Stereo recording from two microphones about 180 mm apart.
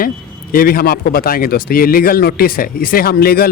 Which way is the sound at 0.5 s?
55° left (ahead or behind).